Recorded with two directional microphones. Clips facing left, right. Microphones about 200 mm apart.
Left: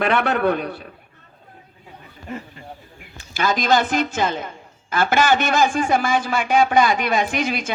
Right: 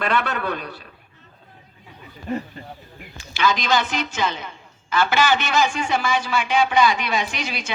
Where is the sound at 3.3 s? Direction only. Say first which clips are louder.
Left 2 dB; 50° left (ahead or behind).